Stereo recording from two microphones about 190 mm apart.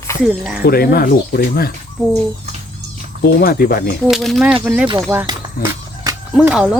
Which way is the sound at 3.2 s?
55° left (ahead or behind).